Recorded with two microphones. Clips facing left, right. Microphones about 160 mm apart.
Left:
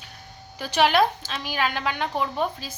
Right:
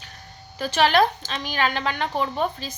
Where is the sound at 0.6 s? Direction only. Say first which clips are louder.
Right 1 dB; 10° left (ahead or behind).